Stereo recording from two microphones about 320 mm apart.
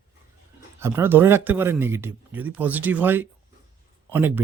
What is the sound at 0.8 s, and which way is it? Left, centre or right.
Speech, centre.